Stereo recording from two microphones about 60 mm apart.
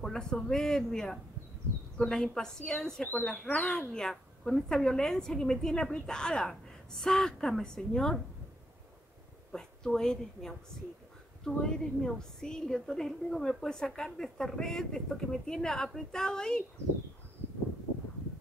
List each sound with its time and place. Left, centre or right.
0.0 s a woman's voice: centre
3.4 s speech: left
3.9 s a woman's voice: centre
9.5 s a woman's voice: centre